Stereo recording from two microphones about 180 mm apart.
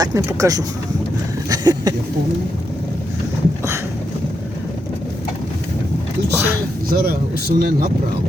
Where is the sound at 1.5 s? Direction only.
20° right (ahead or behind).